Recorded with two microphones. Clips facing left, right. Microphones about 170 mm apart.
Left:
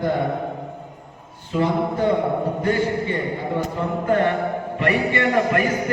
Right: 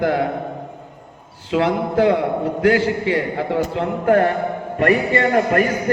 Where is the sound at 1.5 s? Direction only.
90° right; by 4.2 s 70° right (ahead or behind).